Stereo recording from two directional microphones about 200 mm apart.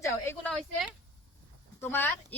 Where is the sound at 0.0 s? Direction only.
10° left (ahead or behind).